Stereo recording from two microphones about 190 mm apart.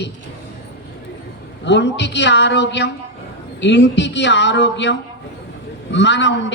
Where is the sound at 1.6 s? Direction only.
65° left (ahead or behind).